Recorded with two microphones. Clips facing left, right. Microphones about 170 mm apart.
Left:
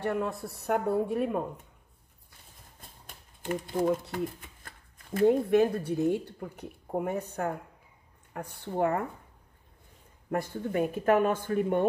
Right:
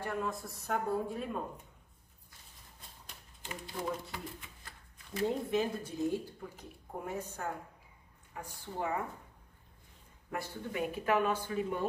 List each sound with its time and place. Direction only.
0.0 s speech: 65° left (ahead or behind)
2.8 s typewriter: 50° left (ahead or behind)
4.1 s speech: 50° left (ahead or behind)
10.3 s speech: 50° left (ahead or behind)